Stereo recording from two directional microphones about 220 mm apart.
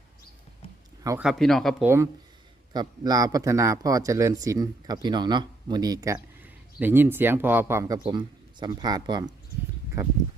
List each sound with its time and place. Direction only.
1.0 s speech: 10° right (ahead or behind)
1.3 s speech: centre (ahead or behind)
2.7 s speech: 15° right (ahead or behind)